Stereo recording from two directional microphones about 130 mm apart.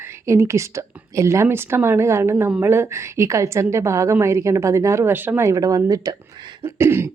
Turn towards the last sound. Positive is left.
turn(degrees=-20)  # may be behind; listen again after turning